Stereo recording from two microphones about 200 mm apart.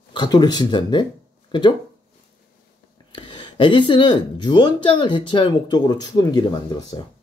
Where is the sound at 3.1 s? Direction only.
25° left (ahead or behind).